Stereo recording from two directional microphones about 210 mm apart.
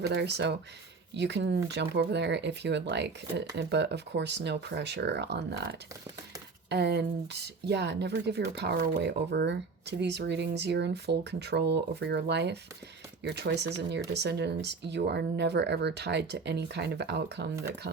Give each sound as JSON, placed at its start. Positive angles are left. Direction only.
{"t": 0.0, "sound": "speech", "side_deg": -55}
{"t": 6.7, "sound": "speech", "side_deg": -50}